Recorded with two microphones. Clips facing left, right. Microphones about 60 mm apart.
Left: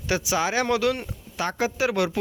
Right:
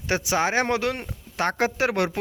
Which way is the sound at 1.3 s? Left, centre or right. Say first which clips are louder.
Right 2 dB; right.